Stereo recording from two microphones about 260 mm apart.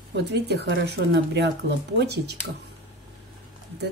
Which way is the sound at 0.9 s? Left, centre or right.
Right.